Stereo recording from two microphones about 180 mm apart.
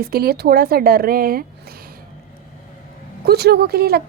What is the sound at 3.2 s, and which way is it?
Speech, 65° right (ahead or behind).